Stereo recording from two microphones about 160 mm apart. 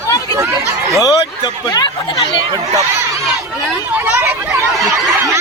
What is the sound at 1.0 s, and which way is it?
Speech, 30° left (ahead or behind).